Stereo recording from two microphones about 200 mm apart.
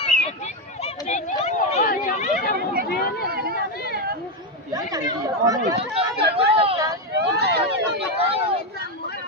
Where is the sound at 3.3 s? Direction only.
50° right (ahead or behind).